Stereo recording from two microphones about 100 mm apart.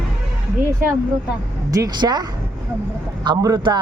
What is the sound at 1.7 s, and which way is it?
Speech, 40° right (ahead or behind).